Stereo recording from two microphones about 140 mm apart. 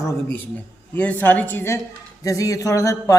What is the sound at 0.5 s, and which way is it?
Speech, 10° left (ahead or behind).